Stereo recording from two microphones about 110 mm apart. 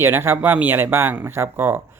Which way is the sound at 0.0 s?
20° right (ahead or behind).